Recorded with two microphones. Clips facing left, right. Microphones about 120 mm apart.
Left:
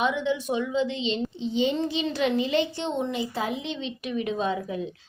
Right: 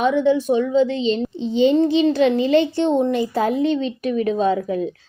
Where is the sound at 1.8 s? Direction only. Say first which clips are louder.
Right 10 dB; 45° right (ahead or behind).